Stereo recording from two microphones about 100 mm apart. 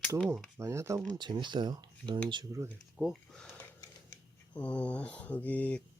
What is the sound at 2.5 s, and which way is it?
Speech, 35° right (ahead or behind).